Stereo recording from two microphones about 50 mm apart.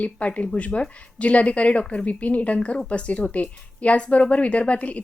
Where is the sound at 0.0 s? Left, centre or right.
Left.